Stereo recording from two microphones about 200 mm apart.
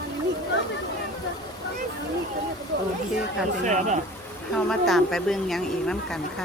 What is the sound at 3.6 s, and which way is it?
Speech, 35° right (ahead or behind).